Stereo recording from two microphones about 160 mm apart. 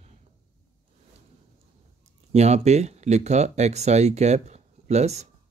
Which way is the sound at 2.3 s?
45° right (ahead or behind).